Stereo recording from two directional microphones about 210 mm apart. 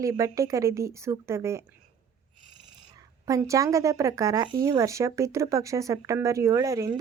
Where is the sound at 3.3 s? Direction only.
15° right (ahead or behind).